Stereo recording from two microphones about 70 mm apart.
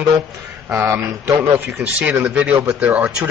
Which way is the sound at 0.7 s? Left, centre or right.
Right.